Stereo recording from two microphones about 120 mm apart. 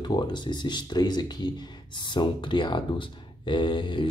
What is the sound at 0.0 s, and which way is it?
Speech, 35° left (ahead or behind).